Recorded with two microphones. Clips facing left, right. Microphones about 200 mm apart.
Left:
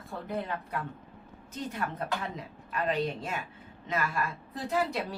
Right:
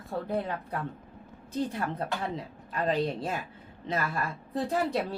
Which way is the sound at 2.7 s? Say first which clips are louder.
Right 2 dB; 35° right (ahead or behind).